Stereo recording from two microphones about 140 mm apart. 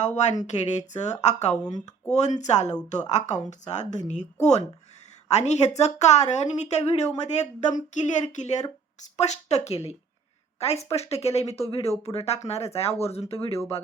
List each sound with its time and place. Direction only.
0.0 s speech: 55° left (ahead or behind)